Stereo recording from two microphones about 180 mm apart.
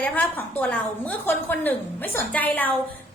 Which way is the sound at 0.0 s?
10° left (ahead or behind).